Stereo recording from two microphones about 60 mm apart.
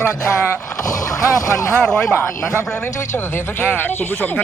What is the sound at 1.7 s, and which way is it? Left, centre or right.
Speech, centre.